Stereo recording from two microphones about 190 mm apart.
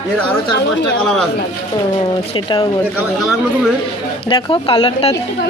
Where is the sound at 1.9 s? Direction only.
25° left (ahead or behind).